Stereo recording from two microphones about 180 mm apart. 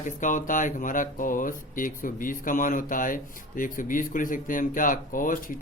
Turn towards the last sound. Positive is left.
turn(degrees=50)  # may be behind; listen again after turning